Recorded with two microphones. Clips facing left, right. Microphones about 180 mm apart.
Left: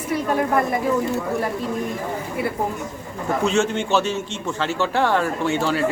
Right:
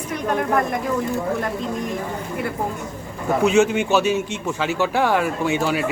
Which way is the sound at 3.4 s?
15° right (ahead or behind).